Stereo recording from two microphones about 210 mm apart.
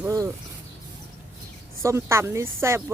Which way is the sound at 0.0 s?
15° right (ahead or behind).